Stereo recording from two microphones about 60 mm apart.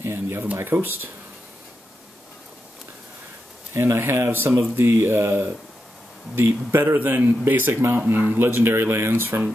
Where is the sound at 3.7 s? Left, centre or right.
Right.